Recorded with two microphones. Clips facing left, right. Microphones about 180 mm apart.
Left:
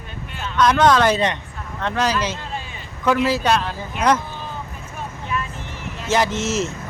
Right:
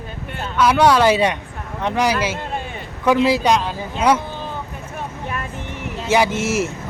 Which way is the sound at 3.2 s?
15° right (ahead or behind).